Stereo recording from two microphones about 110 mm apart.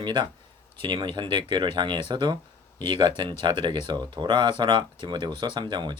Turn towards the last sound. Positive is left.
turn(degrees=-45)  # may be behind; listen again after turning